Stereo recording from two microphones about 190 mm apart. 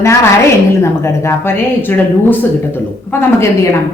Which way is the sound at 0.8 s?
15° left (ahead or behind).